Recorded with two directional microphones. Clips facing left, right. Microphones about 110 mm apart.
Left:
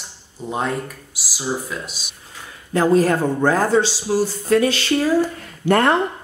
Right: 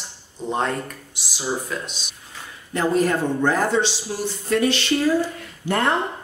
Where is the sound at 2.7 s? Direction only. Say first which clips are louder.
Left 4 dB; 40° left (ahead or behind).